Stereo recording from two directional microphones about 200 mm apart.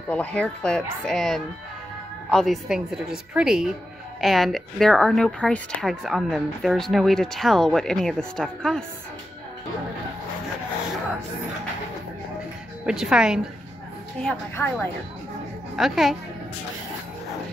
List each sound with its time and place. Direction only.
0.1 s speech: 5° left (ahead or behind)
12.8 s speech: 5° right (ahead or behind)
14.2 s a woman's voice: 10° left (ahead or behind)
15.7 s speech: centre (ahead or behind)